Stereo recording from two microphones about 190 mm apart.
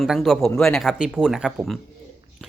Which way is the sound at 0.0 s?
Centre (ahead or behind).